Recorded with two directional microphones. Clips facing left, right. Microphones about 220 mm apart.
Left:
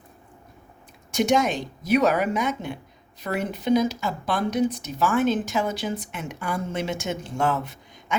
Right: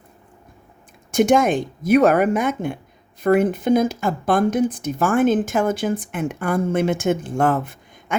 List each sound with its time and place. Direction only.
1.1 s speech: 50° right (ahead or behind)